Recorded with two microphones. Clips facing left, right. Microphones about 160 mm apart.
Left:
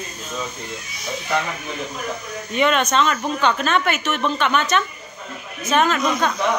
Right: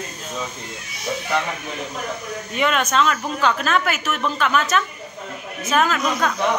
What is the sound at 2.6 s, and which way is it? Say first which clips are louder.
Speech: left 2 dB; 5° right (ahead or behind).